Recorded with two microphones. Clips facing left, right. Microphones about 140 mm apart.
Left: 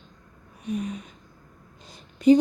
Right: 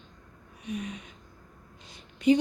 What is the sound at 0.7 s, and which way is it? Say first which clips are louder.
Speech: left 6 dB; 35° left (ahead or behind).